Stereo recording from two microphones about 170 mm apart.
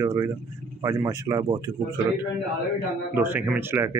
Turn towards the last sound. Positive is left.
turn(degrees=-15)  # may be behind; listen again after turning